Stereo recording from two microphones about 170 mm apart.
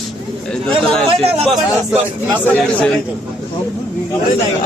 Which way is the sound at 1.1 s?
35° right (ahead or behind).